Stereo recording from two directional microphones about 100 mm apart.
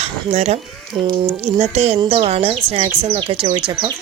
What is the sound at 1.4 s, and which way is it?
A woman's voice, 90° right.